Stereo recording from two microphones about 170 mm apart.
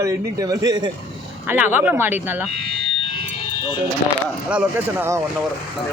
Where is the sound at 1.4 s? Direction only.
10° right (ahead or behind).